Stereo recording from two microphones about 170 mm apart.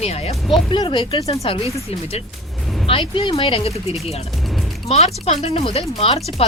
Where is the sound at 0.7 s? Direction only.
25° left (ahead or behind).